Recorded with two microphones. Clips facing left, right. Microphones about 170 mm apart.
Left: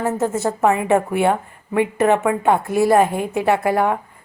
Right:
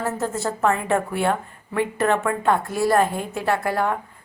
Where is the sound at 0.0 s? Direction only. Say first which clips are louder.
Left 5 dB; 20° left (ahead or behind).